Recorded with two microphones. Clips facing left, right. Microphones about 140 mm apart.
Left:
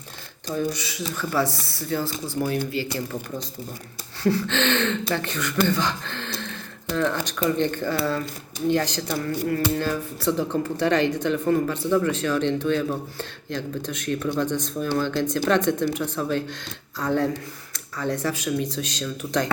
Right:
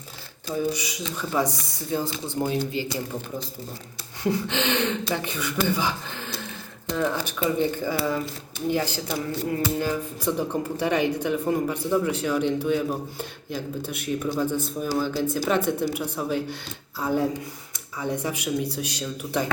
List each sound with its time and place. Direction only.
0.5 s speech: 10° right (ahead or behind)
4.2 s speech: 15° right (ahead or behind)